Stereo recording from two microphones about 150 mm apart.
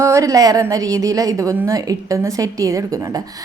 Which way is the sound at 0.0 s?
20° right (ahead or behind).